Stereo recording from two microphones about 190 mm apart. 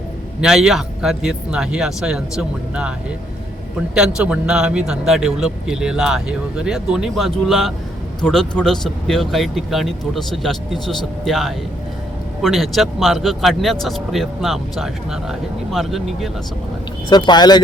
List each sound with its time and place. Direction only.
0.4 s speech: 5° right (ahead or behind)
3.9 s speech: 5° right (ahead or behind)
17.1 s speech: 25° left (ahead or behind)